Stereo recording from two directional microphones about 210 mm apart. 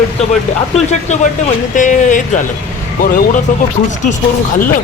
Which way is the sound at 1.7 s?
35° left (ahead or behind).